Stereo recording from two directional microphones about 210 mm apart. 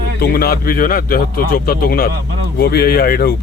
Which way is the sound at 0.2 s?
45° left (ahead or behind).